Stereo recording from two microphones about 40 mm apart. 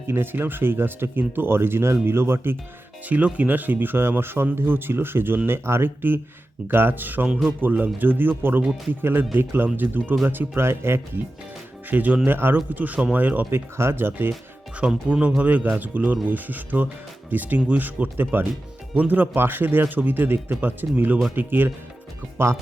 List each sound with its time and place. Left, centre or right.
0.1 s speech: right
1.4 s speech: right
3.1 s speech: right
5.5 s speech: right
9.7 s speech: right
11.9 s speech: right
12.2 s speech: right
12.5 s speech: right
13.5 s speech: right
15.0 s speech: right
15.4 s speech: right
19.3 s speech: right
22.4 s speech: right